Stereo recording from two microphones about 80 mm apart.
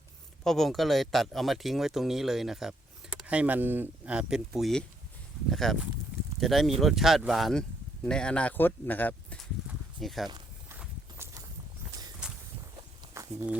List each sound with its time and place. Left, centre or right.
0.4 s speech: centre
3.2 s speech: centre
4.0 s speech: centre; by 9.4 s left
10.0 s speech: centre
13.2 s a sound: right